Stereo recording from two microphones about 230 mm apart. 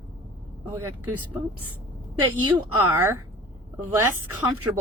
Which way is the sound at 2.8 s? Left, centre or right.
Centre.